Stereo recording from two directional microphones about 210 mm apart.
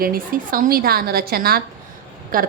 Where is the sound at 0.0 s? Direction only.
45° right (ahead or behind).